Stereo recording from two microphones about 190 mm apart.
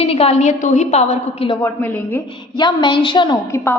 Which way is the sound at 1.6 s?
10° left (ahead or behind).